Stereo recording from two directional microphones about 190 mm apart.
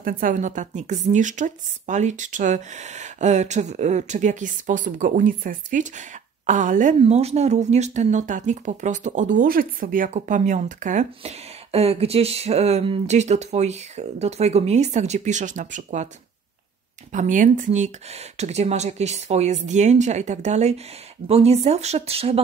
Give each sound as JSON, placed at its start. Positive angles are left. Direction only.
{"t": 0.0, "sound": "a woman's voice", "side_deg": -45}
{"t": 17.1, "sound": "a woman's voice", "side_deg": -40}